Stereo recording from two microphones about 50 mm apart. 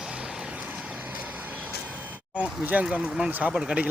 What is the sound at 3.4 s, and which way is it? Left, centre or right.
Speech, centre.